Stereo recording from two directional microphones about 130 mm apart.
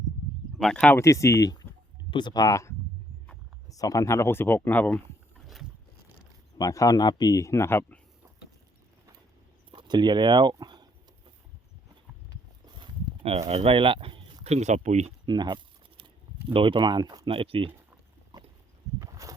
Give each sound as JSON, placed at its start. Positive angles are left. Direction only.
{"t": 0.6, "sound": "speech", "side_deg": 5}
{"t": 0.9, "sound": "speech", "side_deg": 25}
{"t": 6.6, "sound": "speech", "side_deg": 25}
{"t": 9.7, "sound": "speech", "side_deg": -35}
{"t": 12.6, "sound": "a sound", "side_deg": -40}
{"t": 13.5, "sound": "speech", "side_deg": -50}
{"t": 15.3, "sound": "keys jangling", "side_deg": -35}
{"t": 16.5, "sound": "speech", "side_deg": -40}
{"t": 18.3, "sound": "clip-clop", "side_deg": -35}
{"t": 18.9, "sound": "a sound", "side_deg": -25}